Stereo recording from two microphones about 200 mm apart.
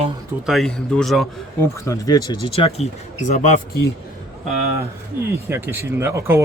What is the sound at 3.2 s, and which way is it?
Speech, 35° left (ahead or behind).